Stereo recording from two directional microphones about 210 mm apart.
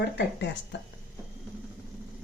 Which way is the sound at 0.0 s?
55° left (ahead or behind).